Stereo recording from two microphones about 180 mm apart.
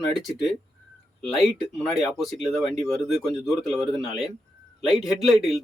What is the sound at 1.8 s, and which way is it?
Speech, centre (ahead or behind).